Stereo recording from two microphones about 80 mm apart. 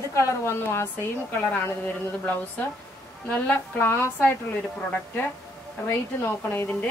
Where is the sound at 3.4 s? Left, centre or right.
Left.